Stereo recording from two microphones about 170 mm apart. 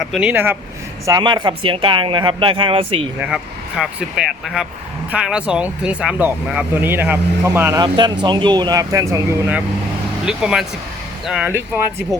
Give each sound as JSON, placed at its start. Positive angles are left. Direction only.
{"t": 0.0, "sound": "speech", "side_deg": -5}
{"t": 1.0, "sound": "speech", "side_deg": -25}
{"t": 3.2, "sound": "speech", "side_deg": -5}
{"t": 10.2, "sound": "speech", "side_deg": -5}